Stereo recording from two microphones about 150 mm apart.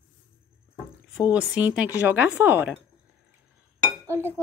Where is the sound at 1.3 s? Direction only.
10° right (ahead or behind).